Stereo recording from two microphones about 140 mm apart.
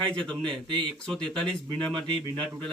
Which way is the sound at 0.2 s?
35° right (ahead or behind).